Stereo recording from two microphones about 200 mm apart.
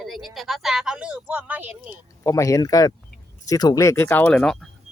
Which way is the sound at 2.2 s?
15° left (ahead or behind).